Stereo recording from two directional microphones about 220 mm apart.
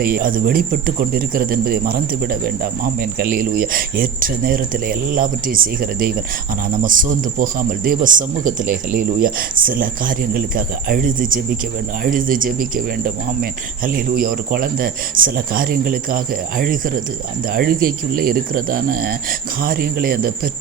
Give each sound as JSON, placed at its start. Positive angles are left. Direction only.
{"t": 0.0, "sound": "speech", "side_deg": -40}